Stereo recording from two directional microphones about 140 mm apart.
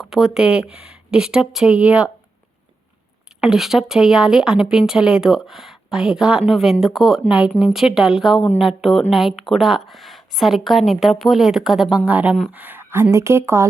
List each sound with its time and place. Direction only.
0.0 s a woman's voice: centre (ahead or behind)
3.4 s a woman's voice: 5° right (ahead or behind); by 13.7 s 20° right (ahead or behind)